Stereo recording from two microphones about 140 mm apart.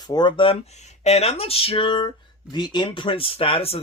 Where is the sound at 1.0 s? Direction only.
50° left (ahead or behind).